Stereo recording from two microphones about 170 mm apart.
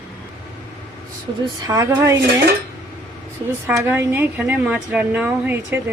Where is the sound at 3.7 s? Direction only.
10° right (ahead or behind).